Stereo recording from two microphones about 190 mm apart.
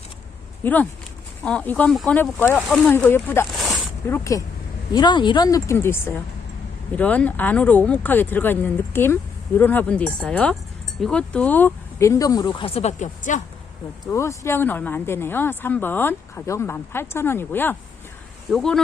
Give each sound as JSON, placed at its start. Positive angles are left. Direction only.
{"t": 0.6, "sound": "speech", "side_deg": 10}
{"t": 3.5, "sound": "a sound", "side_deg": 0}
{"t": 4.1, "sound": "speech", "side_deg": 15}
{"t": 14.1, "sound": "speech", "side_deg": 15}